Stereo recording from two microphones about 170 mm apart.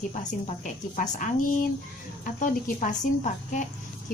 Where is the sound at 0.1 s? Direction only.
45° left (ahead or behind).